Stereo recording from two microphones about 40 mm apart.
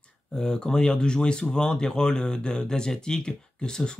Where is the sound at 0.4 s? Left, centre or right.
Centre.